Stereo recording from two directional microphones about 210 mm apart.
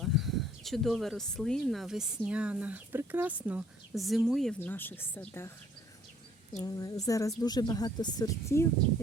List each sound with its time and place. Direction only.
0.0 s speech: centre (ahead or behind)
6.5 s a woman's voice: 15° left (ahead or behind)